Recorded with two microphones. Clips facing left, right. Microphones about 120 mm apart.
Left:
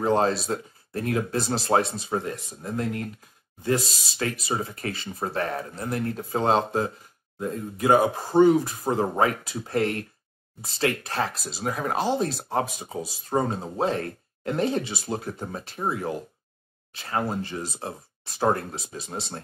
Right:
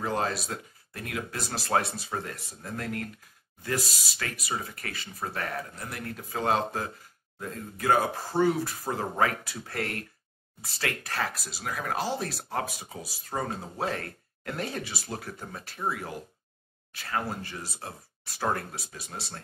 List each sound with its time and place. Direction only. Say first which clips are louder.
0.0 s speech: left 7 dB; 30° left (ahead or behind)